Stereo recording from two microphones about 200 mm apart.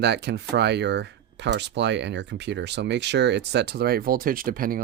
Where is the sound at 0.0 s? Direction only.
55° right (ahead or behind).